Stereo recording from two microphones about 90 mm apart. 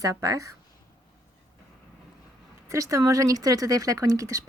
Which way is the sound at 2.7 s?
35° right (ahead or behind).